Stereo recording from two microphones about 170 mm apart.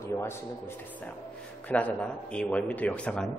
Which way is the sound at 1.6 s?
10° left (ahead or behind).